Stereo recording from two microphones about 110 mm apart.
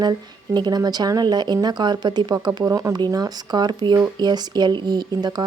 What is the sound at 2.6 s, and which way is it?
Speech, 30° right (ahead or behind).